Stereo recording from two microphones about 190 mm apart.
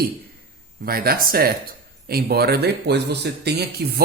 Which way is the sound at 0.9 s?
50° right (ahead or behind).